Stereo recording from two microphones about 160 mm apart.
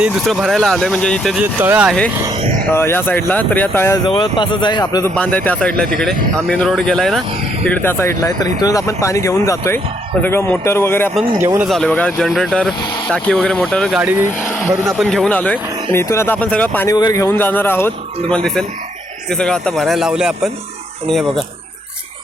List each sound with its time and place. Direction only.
0.0 s speech: centre (ahead or behind)
1.5 s speech: 10° right (ahead or behind)
2.6 s speech: 15° left (ahead or behind)
4.0 s speech: 30° left (ahead or behind)
5.1 s speech: 10° left (ahead or behind)
11.2 s speech: 15° right (ahead or behind)
11.7 s speech: 5° left (ahead or behind)
14.0 s speech: 10° right (ahead or behind)
14.9 s speech: 5° left (ahead or behind)
16.9 s speech: 20° left (ahead or behind); by 21.4 s centre (ahead or behind)